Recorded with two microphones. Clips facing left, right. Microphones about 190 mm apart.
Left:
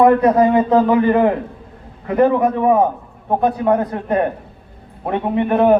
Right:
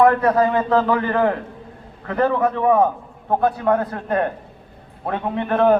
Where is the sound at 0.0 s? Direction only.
15° left (ahead or behind).